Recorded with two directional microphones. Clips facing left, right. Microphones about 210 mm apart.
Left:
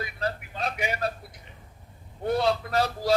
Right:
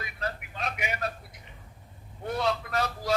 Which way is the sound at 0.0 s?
35° left (ahead or behind).